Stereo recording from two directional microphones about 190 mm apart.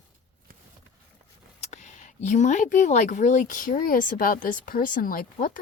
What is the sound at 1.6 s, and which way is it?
Speech, 40° left (ahead or behind).